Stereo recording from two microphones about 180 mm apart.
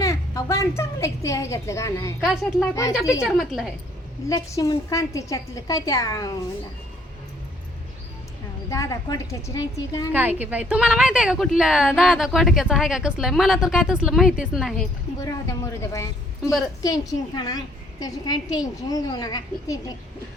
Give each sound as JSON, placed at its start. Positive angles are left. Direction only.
{"t": 0.0, "sound": "a woman's voice", "side_deg": 15}
{"t": 2.2, "sound": "a woman's voice", "side_deg": -5}
{"t": 4.3, "sound": "a woman's voice", "side_deg": 20}
{"t": 8.7, "sound": "a woman's voice", "side_deg": 15}
{"t": 10.1, "sound": "a woman's voice", "side_deg": -10}
{"t": 15.2, "sound": "a woman's voice", "side_deg": 20}